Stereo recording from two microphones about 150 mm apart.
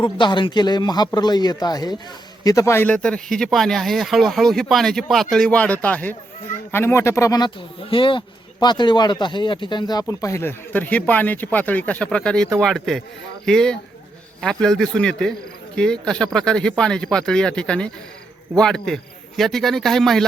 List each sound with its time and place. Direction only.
0.0 s speech: 30° left (ahead or behind); by 20.2 s centre (ahead or behind)